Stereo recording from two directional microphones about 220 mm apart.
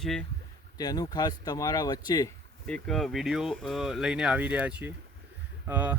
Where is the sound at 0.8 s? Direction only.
15° left (ahead or behind).